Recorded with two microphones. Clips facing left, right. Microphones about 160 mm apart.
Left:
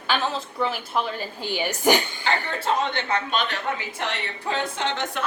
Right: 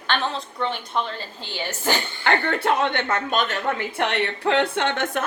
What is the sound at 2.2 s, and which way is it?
Speech, 65° right (ahead or behind).